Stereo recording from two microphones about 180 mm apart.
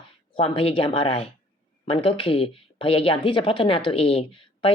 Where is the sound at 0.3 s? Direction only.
30° left (ahead or behind).